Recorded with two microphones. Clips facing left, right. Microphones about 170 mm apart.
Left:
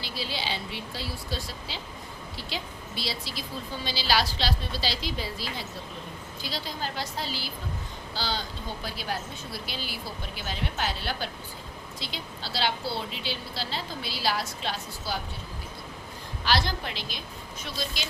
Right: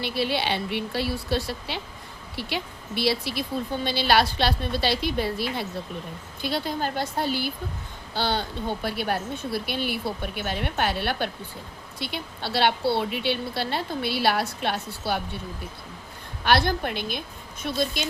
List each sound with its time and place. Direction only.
0.0 s a woman's voice: 60° right (ahead or behind)
16.4 s a woman's voice: 60° right (ahead or behind)